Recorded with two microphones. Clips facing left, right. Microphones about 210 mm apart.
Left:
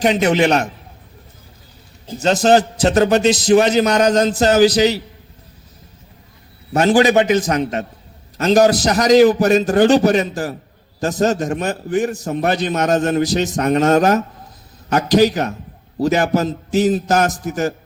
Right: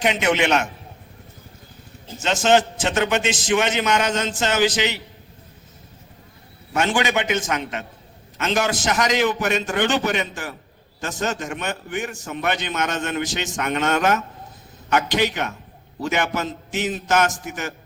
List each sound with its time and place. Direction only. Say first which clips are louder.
0.0 s a man's voice: left 6 dB; 35° left (ahead or behind)
2.0 s a man's voice: left 5 dB; 35° left (ahead or behind)
6.7 s a man's voice: left 9 dB; 35° left (ahead or behind)